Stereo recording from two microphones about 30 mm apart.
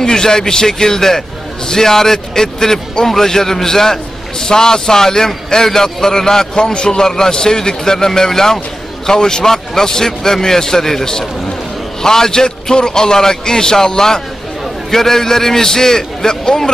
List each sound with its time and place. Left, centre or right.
0.0 s a man's voice: left
6.5 s a man's voice: left